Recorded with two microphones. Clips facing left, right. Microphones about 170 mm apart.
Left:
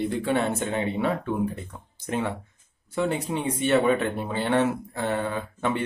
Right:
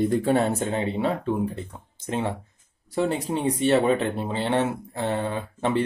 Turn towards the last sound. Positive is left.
turn(degrees=-30)  # may be behind; listen again after turning